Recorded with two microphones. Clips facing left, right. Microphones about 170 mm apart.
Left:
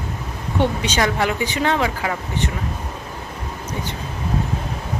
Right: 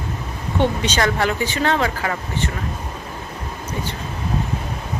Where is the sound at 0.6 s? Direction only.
10° left (ahead or behind).